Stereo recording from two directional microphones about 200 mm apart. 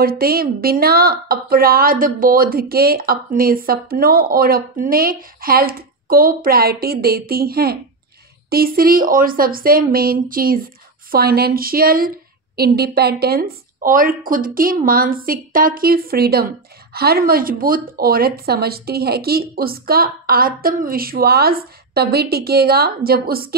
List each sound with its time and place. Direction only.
0.0 s a woman's voice: 50° right (ahead or behind)